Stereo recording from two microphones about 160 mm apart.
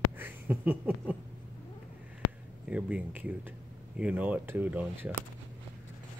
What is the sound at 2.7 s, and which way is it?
Speech, 10° right (ahead or behind).